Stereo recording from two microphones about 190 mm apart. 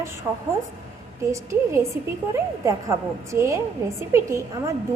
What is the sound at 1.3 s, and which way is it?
A woman's voice, 15° right (ahead or behind).